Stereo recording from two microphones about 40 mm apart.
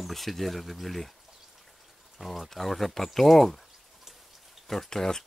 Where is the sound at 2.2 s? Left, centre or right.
Centre.